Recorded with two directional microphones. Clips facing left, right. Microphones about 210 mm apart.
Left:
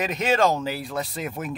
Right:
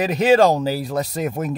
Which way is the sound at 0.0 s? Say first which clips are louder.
Right 7 dB; 35° right (ahead or behind).